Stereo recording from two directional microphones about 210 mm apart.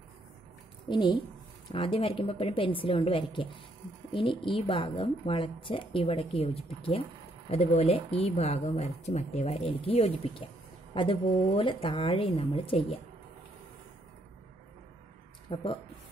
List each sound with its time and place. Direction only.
0.8 s a woman's voice: 20° left (ahead or behind)
15.5 s a woman's voice: 25° left (ahead or behind)